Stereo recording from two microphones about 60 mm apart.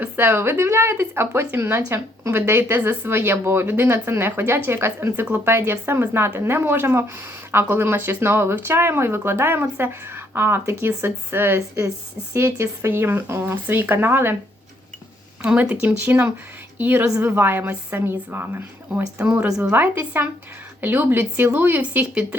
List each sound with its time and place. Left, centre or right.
0.0 s speech: right
15.4 s a woman's voice: right
19.7 s speech: right